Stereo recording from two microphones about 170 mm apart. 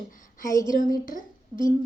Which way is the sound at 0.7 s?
55° left (ahead or behind).